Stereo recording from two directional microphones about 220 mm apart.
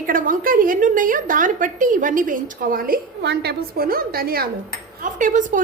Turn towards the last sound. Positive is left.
turn(degrees=-35)  # may be behind; listen again after turning